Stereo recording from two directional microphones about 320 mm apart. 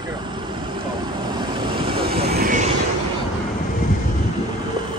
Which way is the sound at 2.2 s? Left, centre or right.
Right.